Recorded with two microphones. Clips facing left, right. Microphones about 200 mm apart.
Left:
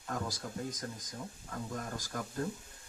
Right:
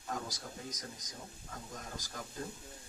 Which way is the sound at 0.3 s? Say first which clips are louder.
Left 6 dB; 50° left (ahead or behind).